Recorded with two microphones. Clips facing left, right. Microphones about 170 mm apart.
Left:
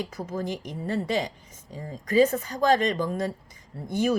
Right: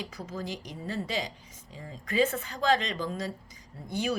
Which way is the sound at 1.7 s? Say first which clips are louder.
Left 7 dB; 40° left (ahead or behind).